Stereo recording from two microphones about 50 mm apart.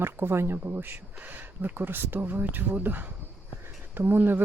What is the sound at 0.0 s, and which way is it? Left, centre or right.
Speech, right.